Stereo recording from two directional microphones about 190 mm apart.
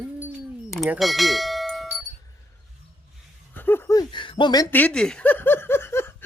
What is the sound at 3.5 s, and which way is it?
Speech, 10° left (ahead or behind).